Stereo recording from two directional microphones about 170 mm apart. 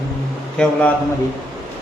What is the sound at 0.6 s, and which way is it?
Speech, 10° left (ahead or behind).